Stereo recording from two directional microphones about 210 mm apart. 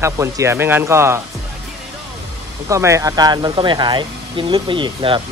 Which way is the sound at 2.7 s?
15° right (ahead or behind).